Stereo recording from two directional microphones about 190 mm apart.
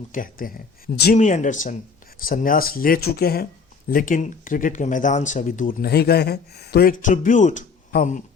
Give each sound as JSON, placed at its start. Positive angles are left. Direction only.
{"t": 0.1, "sound": "speech", "side_deg": 45}
{"t": 1.2, "sound": "speech", "side_deg": 40}